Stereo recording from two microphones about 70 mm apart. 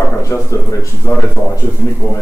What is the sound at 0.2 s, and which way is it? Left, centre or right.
Speech, left.